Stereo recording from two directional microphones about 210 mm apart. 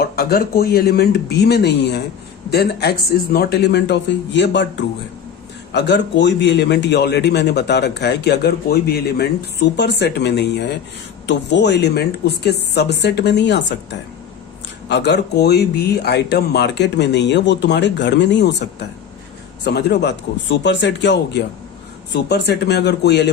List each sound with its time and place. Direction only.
0.0 s a man's voice: 45° left (ahead or behind)
5.7 s a man's voice: 55° left (ahead or behind)
14.8 s a man's voice: 55° left (ahead or behind)